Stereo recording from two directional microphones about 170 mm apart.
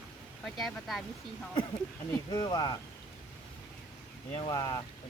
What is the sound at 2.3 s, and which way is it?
Speech, 25° left (ahead or behind).